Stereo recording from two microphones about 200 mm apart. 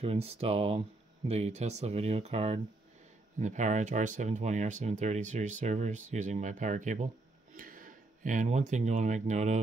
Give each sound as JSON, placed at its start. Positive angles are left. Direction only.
{"t": 0.0, "sound": "speech", "side_deg": -30}